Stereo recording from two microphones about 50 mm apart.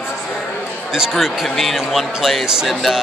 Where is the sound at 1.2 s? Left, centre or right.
Centre.